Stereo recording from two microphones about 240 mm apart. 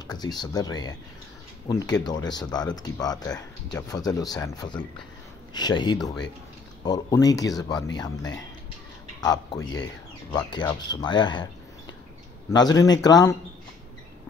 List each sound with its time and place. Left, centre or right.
0.0 s speech: centre
12.5 s speech: centre